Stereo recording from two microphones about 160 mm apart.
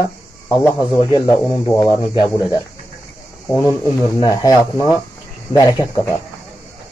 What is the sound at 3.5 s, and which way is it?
Speech, 20° left (ahead or behind).